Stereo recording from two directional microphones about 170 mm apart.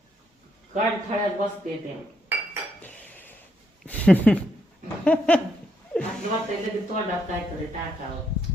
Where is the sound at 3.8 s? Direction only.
10° left (ahead or behind).